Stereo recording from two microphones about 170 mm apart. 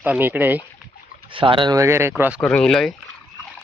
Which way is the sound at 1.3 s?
30° right (ahead or behind).